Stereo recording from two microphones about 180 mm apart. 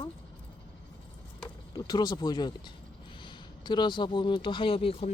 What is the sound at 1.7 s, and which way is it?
Speech, 25° left (ahead or behind).